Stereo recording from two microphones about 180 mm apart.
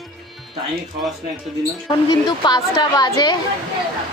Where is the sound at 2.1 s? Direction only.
25° left (ahead or behind).